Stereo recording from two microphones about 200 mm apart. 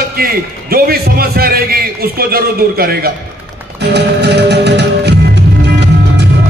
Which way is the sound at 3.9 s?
55° right (ahead or behind).